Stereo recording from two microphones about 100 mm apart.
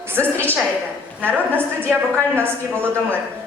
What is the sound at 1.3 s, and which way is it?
A woman's voice, 20° right (ahead or behind).